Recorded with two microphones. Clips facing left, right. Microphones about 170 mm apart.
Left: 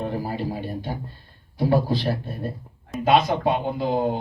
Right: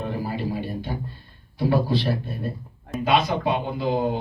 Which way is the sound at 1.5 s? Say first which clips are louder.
Left 1 dB; 45° left (ahead or behind).